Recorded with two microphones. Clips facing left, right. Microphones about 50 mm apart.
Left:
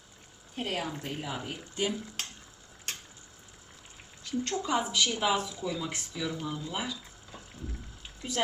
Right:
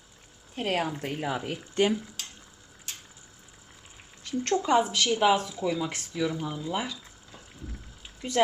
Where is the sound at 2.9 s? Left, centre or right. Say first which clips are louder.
Left 3 dB; left.